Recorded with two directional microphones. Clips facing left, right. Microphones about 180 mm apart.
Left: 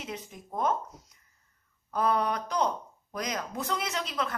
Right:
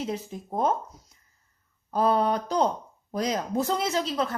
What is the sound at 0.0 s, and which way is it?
Speech, 30° right (ahead or behind).